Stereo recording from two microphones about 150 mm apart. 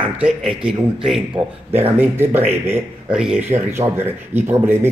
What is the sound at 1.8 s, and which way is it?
A man's voice, 15° right (ahead or behind).